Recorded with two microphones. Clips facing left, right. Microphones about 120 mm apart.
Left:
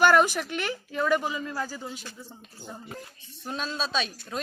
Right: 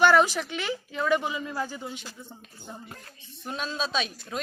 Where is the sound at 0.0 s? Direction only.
5° left (ahead or behind).